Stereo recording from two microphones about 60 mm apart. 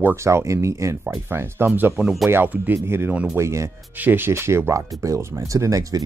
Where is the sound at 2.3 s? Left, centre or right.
Right.